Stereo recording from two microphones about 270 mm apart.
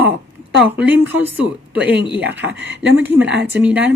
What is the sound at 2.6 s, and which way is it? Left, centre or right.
Speech, right.